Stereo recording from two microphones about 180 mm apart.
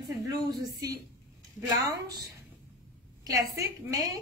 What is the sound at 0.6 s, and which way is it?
Speech, 20° right (ahead or behind).